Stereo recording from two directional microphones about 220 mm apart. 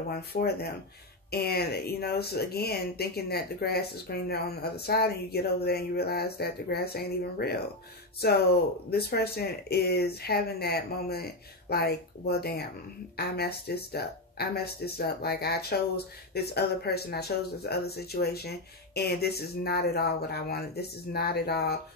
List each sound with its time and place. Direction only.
0.1 s speech: 45° left (ahead or behind)
8.9 s speech: 45° left (ahead or behind)